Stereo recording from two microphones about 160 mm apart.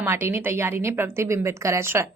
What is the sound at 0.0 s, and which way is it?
A woman's voice, 15° right (ahead or behind).